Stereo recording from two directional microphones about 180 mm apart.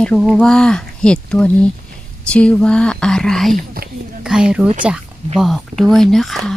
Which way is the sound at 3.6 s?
55° right (ahead or behind).